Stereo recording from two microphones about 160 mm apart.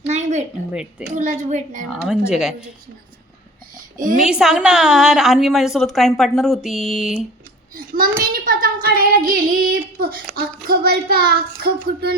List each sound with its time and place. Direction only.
0.0 s a sound: 45° right (ahead or behind)
0.7 s a woman's voice: 5° right (ahead or behind)
1.1 s a child's voice: 50° right (ahead or behind)
1.9 s a woman's voice: centre (ahead or behind)
3.8 s a sound: 55° right (ahead or behind)
4.2 s a woman's voice: 5° right (ahead or behind)
8.2 s child singing: 65° right (ahead or behind)
10.3 s a child's voice: 75° right (ahead or behind)